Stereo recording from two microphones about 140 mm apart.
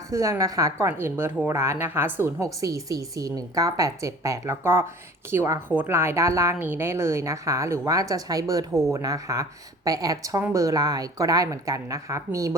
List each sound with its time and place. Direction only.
0.1 s a woman's voice: 20° right (ahead or behind)